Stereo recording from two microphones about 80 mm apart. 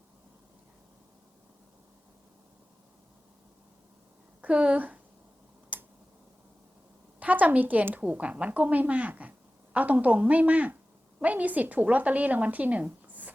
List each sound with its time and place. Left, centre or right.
4.4 s a woman's voice: centre
5.7 s finger snapping: right
7.2 s a woman's voice: centre